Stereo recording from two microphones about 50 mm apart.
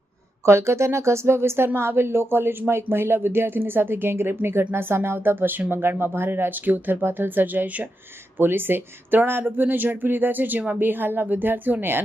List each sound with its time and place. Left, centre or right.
0.4 s speech: right
8.4 s speech: right